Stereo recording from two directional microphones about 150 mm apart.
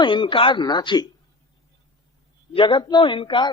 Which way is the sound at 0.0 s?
35° left (ahead or behind).